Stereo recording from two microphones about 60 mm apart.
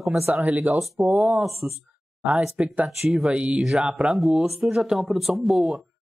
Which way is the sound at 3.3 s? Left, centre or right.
Centre.